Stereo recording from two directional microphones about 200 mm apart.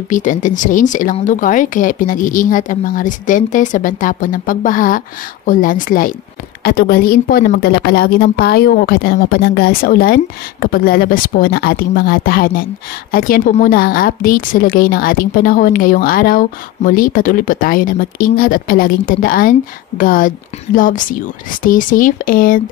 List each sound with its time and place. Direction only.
0.1 s a woman's voice: 40° left (ahead or behind)